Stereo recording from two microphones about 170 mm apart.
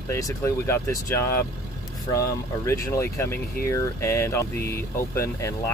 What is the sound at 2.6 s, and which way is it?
Speech, 20° left (ahead or behind).